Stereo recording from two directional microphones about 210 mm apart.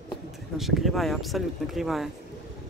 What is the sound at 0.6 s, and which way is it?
Speech, centre (ahead or behind).